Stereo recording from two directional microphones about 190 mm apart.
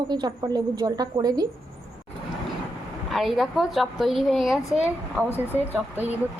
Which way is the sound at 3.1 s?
Centre (ahead or behind).